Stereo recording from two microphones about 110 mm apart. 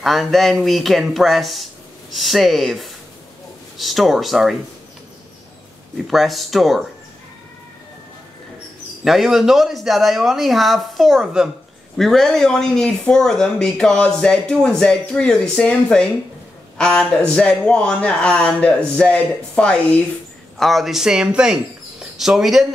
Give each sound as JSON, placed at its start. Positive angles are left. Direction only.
{"t": 0.0, "sound": "speech", "side_deg": 0}
{"t": 6.0, "sound": "speech", "side_deg": 0}
{"t": 9.0, "sound": "speech", "side_deg": -5}